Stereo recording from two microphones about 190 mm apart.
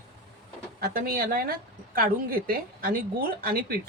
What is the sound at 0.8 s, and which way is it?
Speech, 50° right (ahead or behind).